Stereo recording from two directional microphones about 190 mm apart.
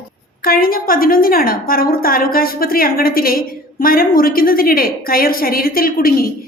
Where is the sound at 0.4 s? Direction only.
50° left (ahead or behind).